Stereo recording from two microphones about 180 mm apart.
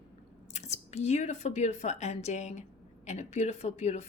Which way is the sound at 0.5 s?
40° left (ahead or behind).